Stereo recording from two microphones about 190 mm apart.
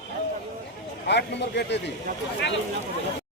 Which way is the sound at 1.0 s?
65° left (ahead or behind).